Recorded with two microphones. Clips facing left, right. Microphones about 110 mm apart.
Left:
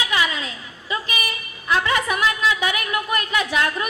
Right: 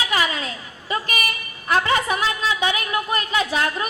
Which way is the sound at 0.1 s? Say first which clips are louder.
Even; 40° right (ahead or behind).